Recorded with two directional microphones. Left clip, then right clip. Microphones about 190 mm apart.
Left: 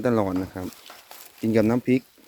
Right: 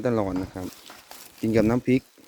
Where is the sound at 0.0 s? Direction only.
5° left (ahead or behind); by 2.0 s 15° right (ahead or behind).